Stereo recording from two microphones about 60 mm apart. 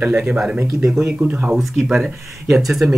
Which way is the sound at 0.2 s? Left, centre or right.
Centre.